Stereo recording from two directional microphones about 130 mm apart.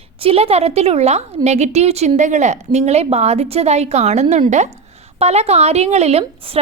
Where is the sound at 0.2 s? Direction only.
50° right (ahead or behind); by 4.7 s 65° right (ahead or behind).